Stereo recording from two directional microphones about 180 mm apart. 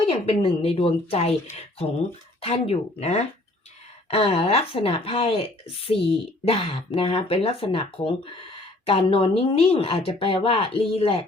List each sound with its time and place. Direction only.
0.3 s speech: 35° left (ahead or behind)